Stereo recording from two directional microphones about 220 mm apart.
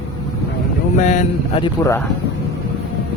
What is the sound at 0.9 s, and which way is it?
Speech, 35° left (ahead or behind).